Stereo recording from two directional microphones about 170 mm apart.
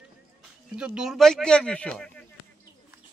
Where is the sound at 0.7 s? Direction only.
5° right (ahead or behind).